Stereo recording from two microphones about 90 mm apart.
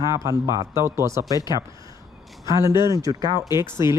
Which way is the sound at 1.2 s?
50° left (ahead or behind).